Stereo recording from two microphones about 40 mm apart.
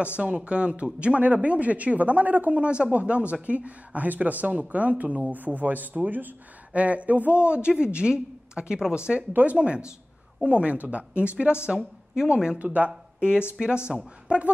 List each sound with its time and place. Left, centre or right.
0.0 s a woman's voice: right
6.7 s a woman's voice: right
9.3 s a woman's voice: right
9.6 s a woman's voice: right
12.5 s a woman's voice: right
13.2 s a woman's voice: right